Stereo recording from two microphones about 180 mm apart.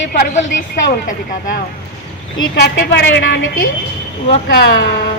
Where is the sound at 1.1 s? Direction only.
45° left (ahead or behind).